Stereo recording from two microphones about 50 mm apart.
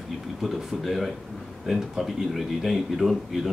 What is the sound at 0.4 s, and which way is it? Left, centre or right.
Speech, centre.